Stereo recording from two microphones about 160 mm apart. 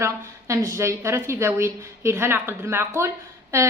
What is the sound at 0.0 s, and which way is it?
Speech, 20° right (ahead or behind).